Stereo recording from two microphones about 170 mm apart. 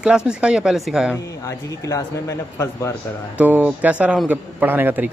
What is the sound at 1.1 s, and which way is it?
A man's voice, 20° left (ahead or behind).